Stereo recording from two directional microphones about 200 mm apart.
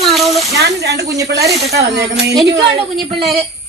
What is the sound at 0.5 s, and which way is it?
Speech, 55° right (ahead or behind).